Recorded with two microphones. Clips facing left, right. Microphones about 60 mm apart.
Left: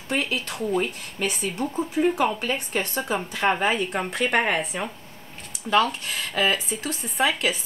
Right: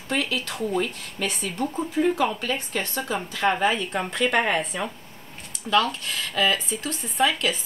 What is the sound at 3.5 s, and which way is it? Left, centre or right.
Speech, centre.